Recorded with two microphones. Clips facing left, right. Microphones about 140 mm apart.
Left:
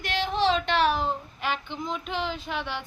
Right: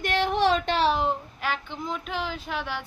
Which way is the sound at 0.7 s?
30° right (ahead or behind).